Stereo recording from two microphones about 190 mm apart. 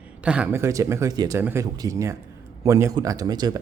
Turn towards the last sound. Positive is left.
turn(degrees=-20)  # may be behind; listen again after turning